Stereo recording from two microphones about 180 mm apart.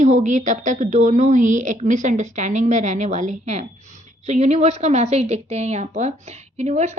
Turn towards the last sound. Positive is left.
turn(degrees=-35)  # may be behind; listen again after turning